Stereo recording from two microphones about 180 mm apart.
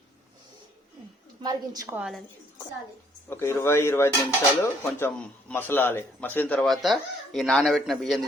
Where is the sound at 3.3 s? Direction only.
15° left (ahead or behind).